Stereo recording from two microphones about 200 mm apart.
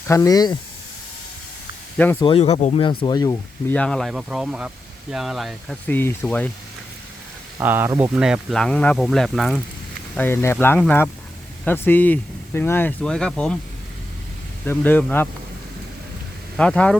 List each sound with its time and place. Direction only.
0.1 s speech: 20° left (ahead or behind)
2.2 s speech: 30° left (ahead or behind)
3.8 s speech: 5° left (ahead or behind)
7.6 s speech: 10° right (ahead or behind)
10.2 s speech: 10° left (ahead or behind)
14.6 s speech: 10° left (ahead or behind)
16.6 s speech: 5° left (ahead or behind)